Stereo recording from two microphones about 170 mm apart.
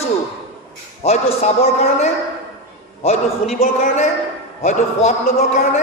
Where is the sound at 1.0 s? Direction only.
40° left (ahead or behind).